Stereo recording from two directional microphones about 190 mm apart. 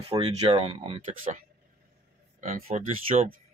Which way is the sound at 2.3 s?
40° right (ahead or behind).